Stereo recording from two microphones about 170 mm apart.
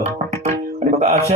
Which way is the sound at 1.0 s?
35° right (ahead or behind).